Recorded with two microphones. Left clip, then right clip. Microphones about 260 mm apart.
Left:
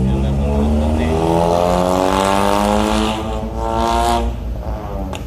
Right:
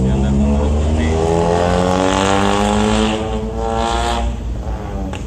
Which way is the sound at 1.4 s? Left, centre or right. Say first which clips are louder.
Left 2 dB; left.